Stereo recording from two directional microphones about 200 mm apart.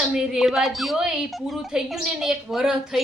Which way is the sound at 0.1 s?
5° right (ahead or behind).